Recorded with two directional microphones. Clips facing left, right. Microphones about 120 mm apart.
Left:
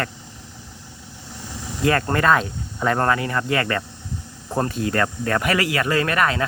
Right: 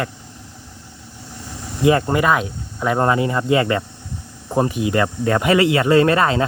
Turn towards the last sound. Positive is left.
turn(degrees=-25)  # may be behind; listen again after turning